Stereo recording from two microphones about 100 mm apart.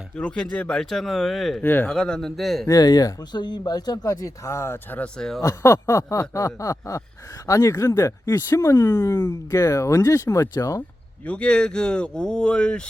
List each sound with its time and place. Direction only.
0.2 s speech: 10° left (ahead or behind)
1.6 s speech: 20° left (ahead or behind)
1.9 s speech: 5° left (ahead or behind)
2.6 s speech: 40° left (ahead or behind); by 5.0 s 20° left (ahead or behind)
5.1 s speech: 5° left (ahead or behind)
5.4 s speech: 30° left (ahead or behind)
11.3 s speech: 10° left (ahead or behind)